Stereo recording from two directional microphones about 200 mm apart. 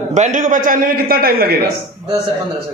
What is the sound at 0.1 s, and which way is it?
A man's voice, 40° right (ahead or behind).